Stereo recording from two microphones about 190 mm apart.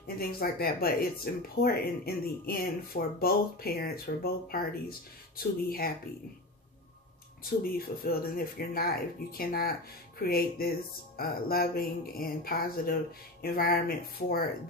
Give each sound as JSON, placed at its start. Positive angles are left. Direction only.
{"t": 0.0, "sound": "speech", "side_deg": 50}
{"t": 7.6, "sound": "speech", "side_deg": 50}